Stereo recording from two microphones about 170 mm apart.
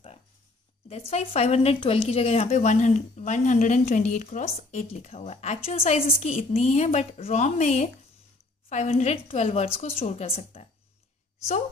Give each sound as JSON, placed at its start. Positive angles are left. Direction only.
{"t": 0.8, "sound": "speech", "side_deg": 35}